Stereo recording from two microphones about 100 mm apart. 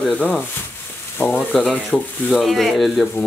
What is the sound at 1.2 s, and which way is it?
Frying, 20° left (ahead or behind).